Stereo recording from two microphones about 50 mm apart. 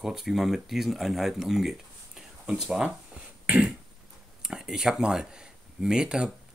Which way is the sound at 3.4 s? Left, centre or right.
Centre.